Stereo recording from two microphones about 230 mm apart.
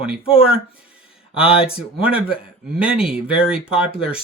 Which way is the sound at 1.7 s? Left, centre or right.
Centre.